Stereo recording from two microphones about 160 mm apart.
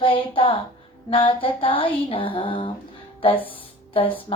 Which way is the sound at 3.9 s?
35° left (ahead or behind).